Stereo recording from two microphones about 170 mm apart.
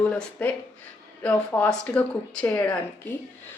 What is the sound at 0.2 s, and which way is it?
Speech, 10° left (ahead or behind).